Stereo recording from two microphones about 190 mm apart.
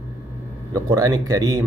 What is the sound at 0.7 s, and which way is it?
Speech, 20° right (ahead or behind).